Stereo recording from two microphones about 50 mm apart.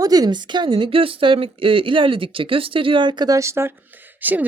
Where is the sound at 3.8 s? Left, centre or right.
Right.